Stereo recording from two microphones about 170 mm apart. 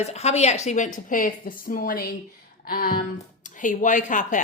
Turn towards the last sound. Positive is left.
turn(degrees=50)  # may be behind; listen again after turning